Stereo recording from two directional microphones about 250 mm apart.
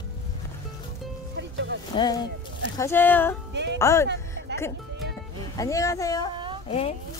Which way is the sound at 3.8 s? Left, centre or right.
Centre.